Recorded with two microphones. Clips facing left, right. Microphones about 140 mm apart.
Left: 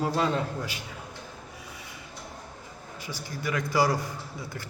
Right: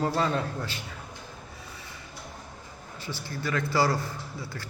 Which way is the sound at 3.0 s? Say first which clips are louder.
Right 1 dB; 15° left (ahead or behind).